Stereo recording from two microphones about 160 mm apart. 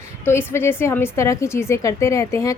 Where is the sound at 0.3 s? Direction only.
15° left (ahead or behind).